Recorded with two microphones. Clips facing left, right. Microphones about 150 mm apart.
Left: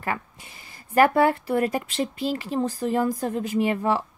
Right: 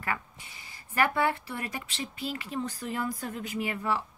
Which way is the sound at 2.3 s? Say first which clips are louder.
Left 8 dB; 40° left (ahead or behind).